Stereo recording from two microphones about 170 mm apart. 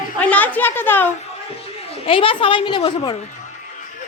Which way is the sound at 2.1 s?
30° left (ahead or behind).